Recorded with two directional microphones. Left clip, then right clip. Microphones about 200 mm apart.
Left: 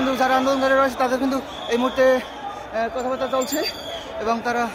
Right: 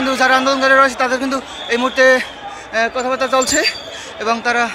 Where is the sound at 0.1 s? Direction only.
5° right (ahead or behind).